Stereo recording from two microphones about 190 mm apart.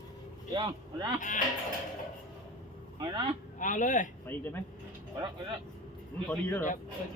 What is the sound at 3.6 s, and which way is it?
Speech, 40° left (ahead or behind).